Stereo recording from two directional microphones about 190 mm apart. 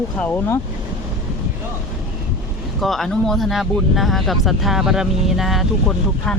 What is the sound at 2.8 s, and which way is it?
Speech, centre (ahead or behind).